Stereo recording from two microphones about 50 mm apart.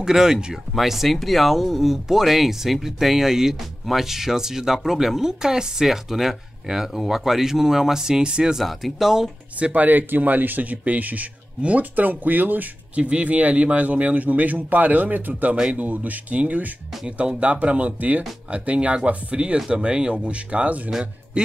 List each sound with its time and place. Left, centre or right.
0.0 s speech: centre
8.5 s speech: centre
9.6 s speech: right
15.5 s speech: centre
15.8 s speech: right